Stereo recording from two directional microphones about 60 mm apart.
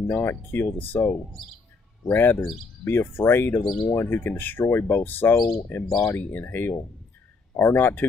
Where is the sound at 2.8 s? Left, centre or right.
Left.